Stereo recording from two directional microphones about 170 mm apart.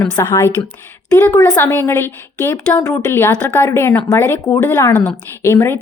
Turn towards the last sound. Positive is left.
turn(degrees=15)  # may be behind; listen again after turning